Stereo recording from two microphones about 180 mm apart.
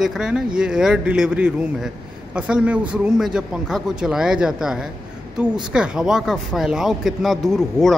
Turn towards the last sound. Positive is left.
turn(degrees=0)  # may be behind; listen again after turning